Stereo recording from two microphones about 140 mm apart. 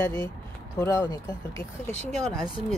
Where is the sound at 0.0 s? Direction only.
20° left (ahead or behind).